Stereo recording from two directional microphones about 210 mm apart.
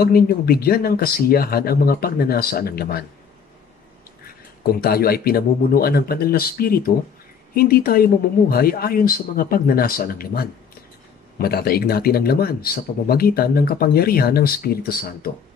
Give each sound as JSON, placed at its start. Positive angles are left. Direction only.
{"t": 0.0, "sound": "speech", "side_deg": 45}
{"t": 4.7, "sound": "speech", "side_deg": 45}